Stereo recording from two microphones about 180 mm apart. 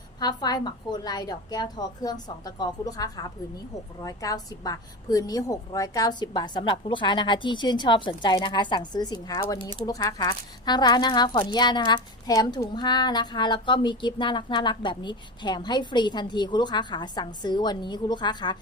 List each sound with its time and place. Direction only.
0.2 s speech: 20° left (ahead or behind)